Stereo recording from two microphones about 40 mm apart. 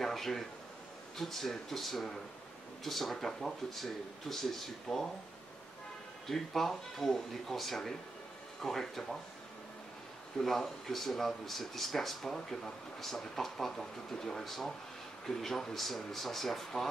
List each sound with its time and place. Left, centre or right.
0.0 s speech: centre
4.8 s speech: centre
6.2 s speech: centre
10.4 s speech: centre